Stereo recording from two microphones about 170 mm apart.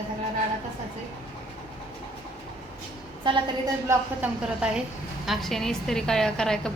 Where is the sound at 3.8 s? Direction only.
10° right (ahead or behind).